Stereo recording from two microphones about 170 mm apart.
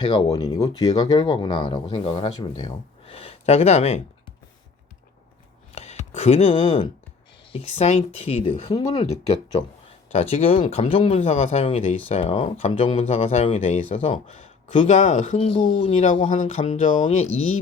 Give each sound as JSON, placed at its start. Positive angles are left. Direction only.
{"t": 0.0, "sound": "speech", "side_deg": 30}
{"t": 0.6, "sound": "speech", "side_deg": 35}
{"t": 5.7, "sound": "speech", "side_deg": 40}
{"t": 7.5, "sound": "speech", "side_deg": 40}
{"t": 15.4, "sound": "speech", "side_deg": 30}
{"t": 16.3, "sound": "speech", "side_deg": 45}